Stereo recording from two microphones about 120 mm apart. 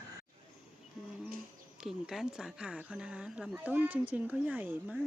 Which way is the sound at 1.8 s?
5° right (ahead or behind).